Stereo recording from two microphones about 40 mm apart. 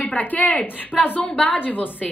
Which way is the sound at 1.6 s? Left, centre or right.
Left.